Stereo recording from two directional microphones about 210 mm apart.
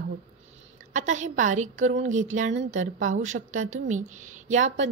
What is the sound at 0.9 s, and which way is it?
A woman's voice, 35° right (ahead or behind).